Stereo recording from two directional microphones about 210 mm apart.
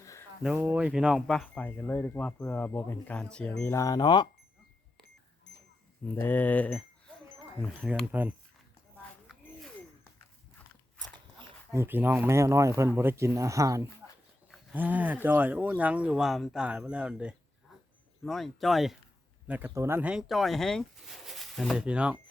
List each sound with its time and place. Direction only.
0.0 s a sound: 15° left (ahead or behind)
0.4 s speech: 10° right (ahead or behind); by 4.3 s 20° left (ahead or behind)
6.1 s speech: 10° left (ahead or behind)
11.1 s biting: 20° right (ahead or behind)
11.8 s speech: 10° right (ahead or behind)
14.0 s a sound: 5° right (ahead or behind)
14.5 s speech: 10° right (ahead or behind)